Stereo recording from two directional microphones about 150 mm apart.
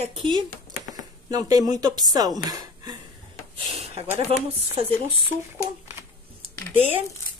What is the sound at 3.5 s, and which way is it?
Speech, 40° right (ahead or behind).